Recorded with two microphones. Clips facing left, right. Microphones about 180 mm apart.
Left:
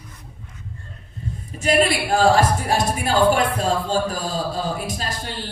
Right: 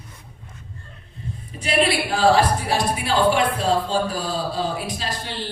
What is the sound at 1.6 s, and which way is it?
Music, 45° left (ahead or behind).